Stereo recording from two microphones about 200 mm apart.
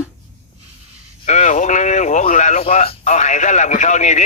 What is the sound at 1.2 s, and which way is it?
Radio, 35° left (ahead or behind).